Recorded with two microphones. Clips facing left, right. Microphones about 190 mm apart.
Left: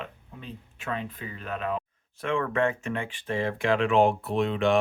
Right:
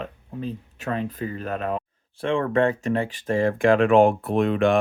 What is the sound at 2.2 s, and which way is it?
Speech, 30° right (ahead or behind).